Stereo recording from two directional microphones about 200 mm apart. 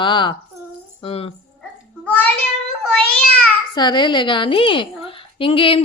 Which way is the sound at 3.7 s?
20° left (ahead or behind).